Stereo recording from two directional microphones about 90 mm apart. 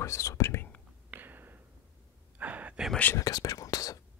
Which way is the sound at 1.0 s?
20° right (ahead or behind).